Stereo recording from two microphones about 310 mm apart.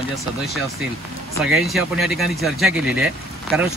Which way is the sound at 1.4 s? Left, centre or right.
Centre.